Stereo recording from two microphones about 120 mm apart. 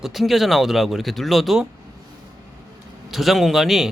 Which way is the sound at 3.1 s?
Centre (ahead or behind).